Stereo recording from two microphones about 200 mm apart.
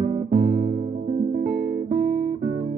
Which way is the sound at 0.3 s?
55° right (ahead or behind).